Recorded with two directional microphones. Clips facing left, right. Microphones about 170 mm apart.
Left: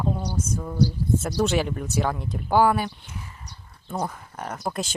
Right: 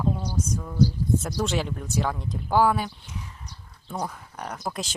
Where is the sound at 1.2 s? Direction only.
5° left (ahead or behind).